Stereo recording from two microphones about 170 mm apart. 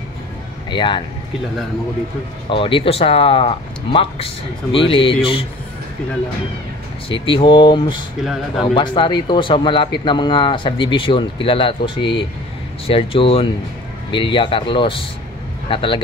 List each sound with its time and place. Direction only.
0.7 s speech: 30° left (ahead or behind)
2.5 s speech: 30° left (ahead or behind)
7.1 s speech: 30° left (ahead or behind)
8.2 s speech: centre (ahead or behind)
8.7 s speech: 25° left (ahead or behind)